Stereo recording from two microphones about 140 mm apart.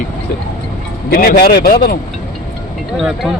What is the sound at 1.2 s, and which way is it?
Speech, 90° left.